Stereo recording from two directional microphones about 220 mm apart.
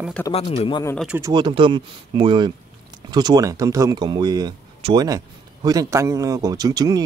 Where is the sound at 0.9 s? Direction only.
5° right (ahead or behind).